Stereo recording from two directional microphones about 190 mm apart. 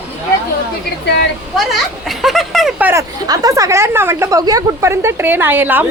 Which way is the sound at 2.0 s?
Centre (ahead or behind).